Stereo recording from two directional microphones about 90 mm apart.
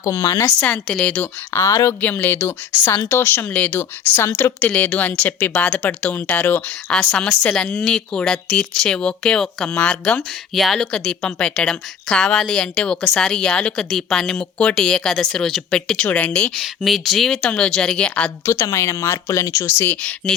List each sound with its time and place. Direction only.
0.0 s speech: 40° left (ahead or behind)
0.6 s speech: 10° left (ahead or behind)
1.5 s speech: 30° left (ahead or behind)
2.0 s a woman's voice: 20° left (ahead or behind)
4.6 s speech: 15° left (ahead or behind)
7.1 s speech: 10° left (ahead or behind)
16.6 s speech: centre (ahead or behind)
18.4 s speech: 35° left (ahead or behind); by 20.3 s 15° left (ahead or behind)